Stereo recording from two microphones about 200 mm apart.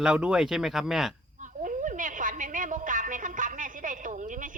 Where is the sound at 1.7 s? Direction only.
40° right (ahead or behind).